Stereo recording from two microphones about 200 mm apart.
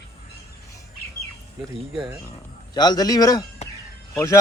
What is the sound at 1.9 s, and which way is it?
Speech, 5° right (ahead or behind).